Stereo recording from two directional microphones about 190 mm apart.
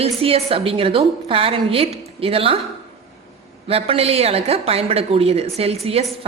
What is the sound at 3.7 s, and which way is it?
Speech, 30° right (ahead or behind).